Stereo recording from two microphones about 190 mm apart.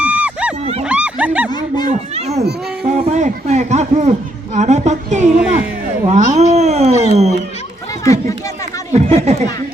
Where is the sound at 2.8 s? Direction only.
35° right (ahead or behind).